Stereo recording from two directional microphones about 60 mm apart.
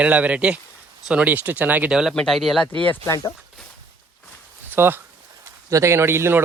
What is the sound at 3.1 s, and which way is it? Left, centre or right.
Speech, left.